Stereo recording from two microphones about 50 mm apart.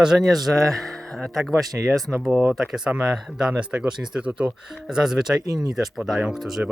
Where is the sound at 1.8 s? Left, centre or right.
Right.